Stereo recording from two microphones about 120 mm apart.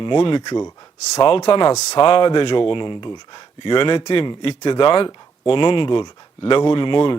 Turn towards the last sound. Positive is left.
turn(degrees=45)  # may be behind; listen again after turning